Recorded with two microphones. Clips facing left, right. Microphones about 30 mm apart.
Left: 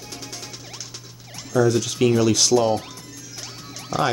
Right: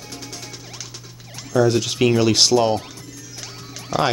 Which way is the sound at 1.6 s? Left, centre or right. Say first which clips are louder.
Even; right.